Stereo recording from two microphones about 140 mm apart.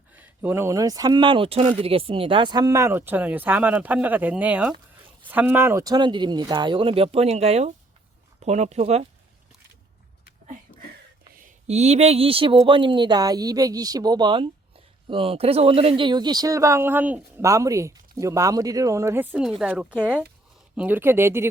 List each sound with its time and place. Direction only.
0.1 s speech: 15° right (ahead or behind); by 9.0 s 50° right (ahead or behind)
11.7 s speech: 50° right (ahead or behind); by 21.5 s 15° right (ahead or behind)